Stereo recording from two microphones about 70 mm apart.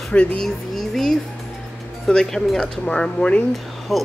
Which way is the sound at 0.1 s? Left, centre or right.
Centre.